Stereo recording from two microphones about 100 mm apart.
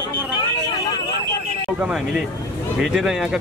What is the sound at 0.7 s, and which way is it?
Vehicle, 45° left (ahead or behind).